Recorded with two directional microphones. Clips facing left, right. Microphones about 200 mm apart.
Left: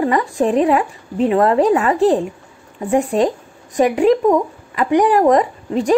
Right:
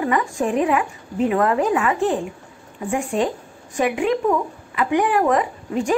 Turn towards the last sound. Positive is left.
turn(degrees=35)  # may be behind; listen again after turning